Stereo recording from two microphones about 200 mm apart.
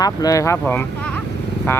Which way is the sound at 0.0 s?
20° left (ahead or behind).